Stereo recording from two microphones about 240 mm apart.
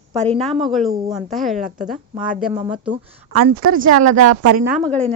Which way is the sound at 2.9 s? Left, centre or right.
Right.